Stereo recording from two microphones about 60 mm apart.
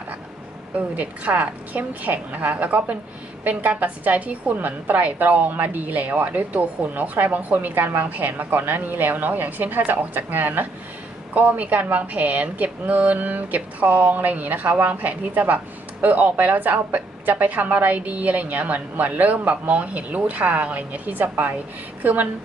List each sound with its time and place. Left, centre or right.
0.8 s a woman's voice: right